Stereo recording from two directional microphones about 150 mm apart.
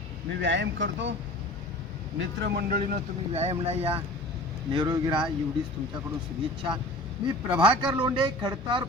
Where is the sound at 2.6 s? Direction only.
75° right (ahead or behind).